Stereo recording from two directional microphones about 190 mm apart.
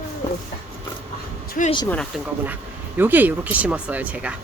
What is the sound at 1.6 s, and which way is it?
Speech, 45° left (ahead or behind).